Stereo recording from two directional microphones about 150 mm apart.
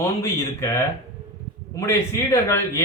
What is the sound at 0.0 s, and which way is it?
A man's voice, 20° left (ahead or behind).